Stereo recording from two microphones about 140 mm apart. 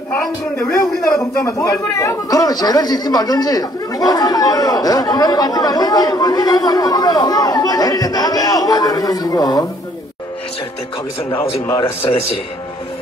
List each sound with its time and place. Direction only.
0.1 s a man's voice: 10° left (ahead or behind)
1.2 s a man's voice: 20° left (ahead or behind)
11.8 s speech: 40° left (ahead or behind)